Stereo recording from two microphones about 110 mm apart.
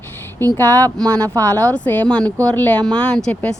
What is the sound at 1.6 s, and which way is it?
A woman's voice, 15° left (ahead or behind).